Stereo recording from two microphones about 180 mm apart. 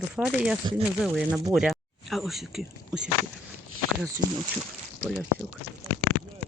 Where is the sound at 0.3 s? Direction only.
5° right (ahead or behind).